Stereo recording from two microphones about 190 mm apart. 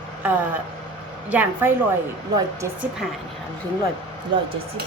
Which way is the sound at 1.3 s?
10° right (ahead or behind).